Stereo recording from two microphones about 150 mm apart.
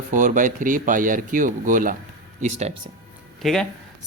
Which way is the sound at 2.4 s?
45° right (ahead or behind).